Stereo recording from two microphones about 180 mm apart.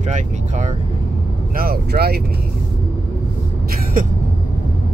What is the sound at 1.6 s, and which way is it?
Speech, 60° right (ahead or behind).